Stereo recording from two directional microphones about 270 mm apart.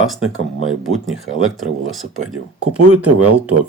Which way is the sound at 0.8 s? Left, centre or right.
Centre.